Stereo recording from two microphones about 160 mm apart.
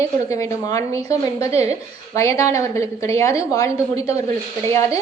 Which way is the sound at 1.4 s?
40° right (ahead or behind).